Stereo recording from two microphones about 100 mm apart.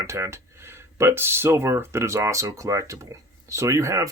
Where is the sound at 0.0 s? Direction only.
30° right (ahead or behind).